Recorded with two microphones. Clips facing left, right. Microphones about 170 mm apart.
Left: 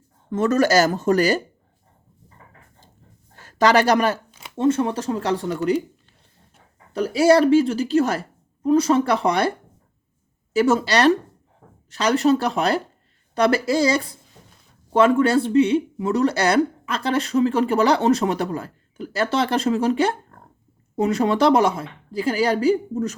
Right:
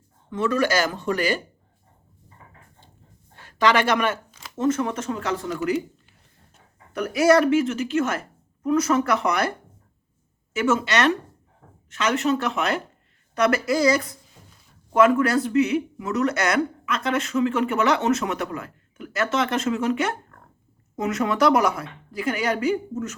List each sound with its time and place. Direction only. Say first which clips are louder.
0.3 s speech: left 4 dB; 45° left (ahead or behind)
3.3 s speech: left 3 dB; 40° left (ahead or behind)
6.9 s speech: left 2 dB; 30° left (ahead or behind)
10.5 s speech: left 4 dB; 35° left (ahead or behind)